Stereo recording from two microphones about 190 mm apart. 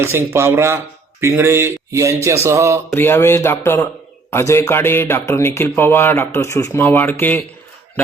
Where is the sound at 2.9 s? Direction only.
10° left (ahead or behind).